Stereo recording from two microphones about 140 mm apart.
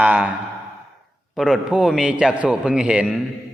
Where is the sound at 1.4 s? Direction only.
Centre (ahead or behind).